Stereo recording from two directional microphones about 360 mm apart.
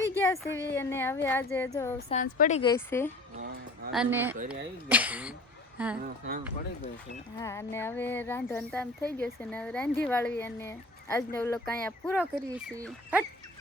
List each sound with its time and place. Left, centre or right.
0.2 s a woman's voice: centre
2.0 s speech: left
3.3 s speech: right
3.9 s speech: centre
7.3 s speech: centre